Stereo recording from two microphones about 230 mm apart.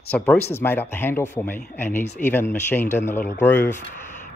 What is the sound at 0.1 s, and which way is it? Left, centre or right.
Speech, centre.